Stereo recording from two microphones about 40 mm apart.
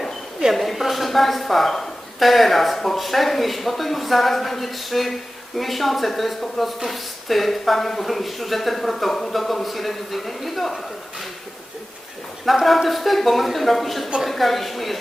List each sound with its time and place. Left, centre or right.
0.5 s a woman's voice: centre
12.5 s a woman's voice: centre